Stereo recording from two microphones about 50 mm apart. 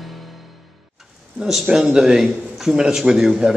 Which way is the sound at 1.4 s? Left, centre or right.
Centre.